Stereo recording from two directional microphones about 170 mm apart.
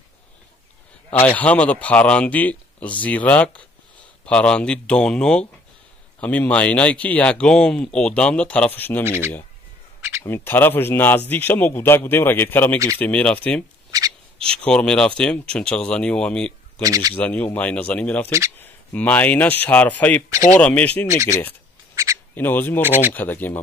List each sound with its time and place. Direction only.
1.2 s speech: 10° left (ahead or behind)
9.0 s speech: 15° right (ahead or behind)
10.2 s speech: 15° left (ahead or behind)
16.8 s speech: 20° right (ahead or behind)
17.1 s speech: 10° left (ahead or behind)
21.9 s duck: 20° right (ahead or behind)
22.3 s speech: 10° left (ahead or behind)
22.8 s speech: 10° right (ahead or behind)
23.1 s speech: 10° left (ahead or behind)